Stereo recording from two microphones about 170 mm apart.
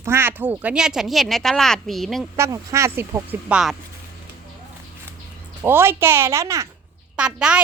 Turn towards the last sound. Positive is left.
turn(degrees=-5)  # may be behind; listen again after turning